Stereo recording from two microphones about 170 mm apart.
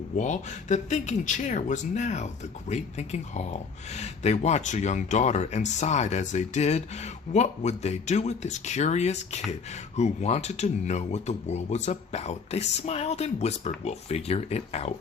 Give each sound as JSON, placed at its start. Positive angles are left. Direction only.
{"t": 0.2, "sound": "speech", "side_deg": 45}